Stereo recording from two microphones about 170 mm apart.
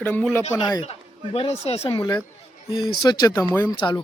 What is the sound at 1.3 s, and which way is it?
Speech, 40° left (ahead or behind).